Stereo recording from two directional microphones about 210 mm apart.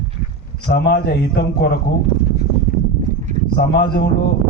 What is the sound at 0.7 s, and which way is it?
Speech, 50° left (ahead or behind).